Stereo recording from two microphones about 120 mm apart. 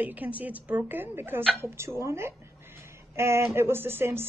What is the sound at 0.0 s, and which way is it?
A woman's voice, 15° right (ahead or behind).